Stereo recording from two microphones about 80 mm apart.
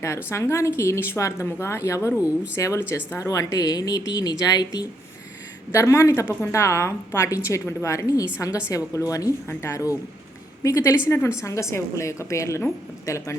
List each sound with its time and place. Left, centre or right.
0.3 s a woman's voice: left
5.7 s a woman's voice: left